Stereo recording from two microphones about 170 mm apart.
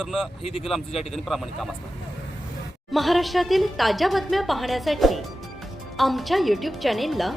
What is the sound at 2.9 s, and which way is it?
A woman's voice, centre (ahead or behind).